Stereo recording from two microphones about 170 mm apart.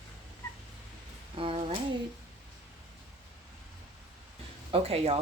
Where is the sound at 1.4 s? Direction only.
35° right (ahead or behind).